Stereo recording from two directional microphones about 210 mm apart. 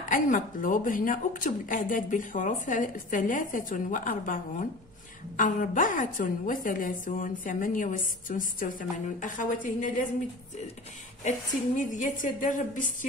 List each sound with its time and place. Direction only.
0.0 s speech: 40° left (ahead or behind)
11.9 s speech: 35° left (ahead or behind)